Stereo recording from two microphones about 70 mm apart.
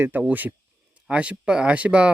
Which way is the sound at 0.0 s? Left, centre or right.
Right.